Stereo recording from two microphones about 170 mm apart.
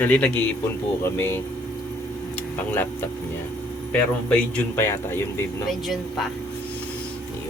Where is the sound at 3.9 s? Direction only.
10° left (ahead or behind).